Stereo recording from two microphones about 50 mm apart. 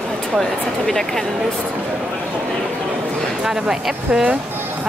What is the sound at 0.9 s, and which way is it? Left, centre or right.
Speech, centre.